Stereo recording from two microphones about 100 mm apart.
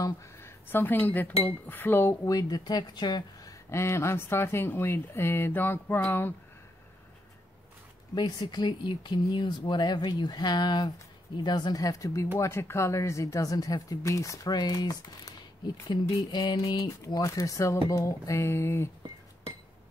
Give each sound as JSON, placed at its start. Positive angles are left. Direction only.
{"t": 0.0, "sound": "speech", "side_deg": 25}
{"t": 2.2, "sound": "speech", "side_deg": 40}
{"t": 3.7, "sound": "speech", "side_deg": 25}
{"t": 8.1, "sound": "speech", "side_deg": 45}